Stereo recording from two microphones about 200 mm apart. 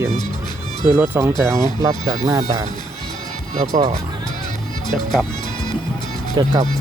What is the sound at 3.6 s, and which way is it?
Speech, 30° right (ahead or behind).